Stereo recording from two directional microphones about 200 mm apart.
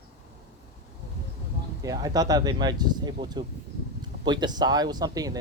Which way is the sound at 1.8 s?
20° right (ahead or behind).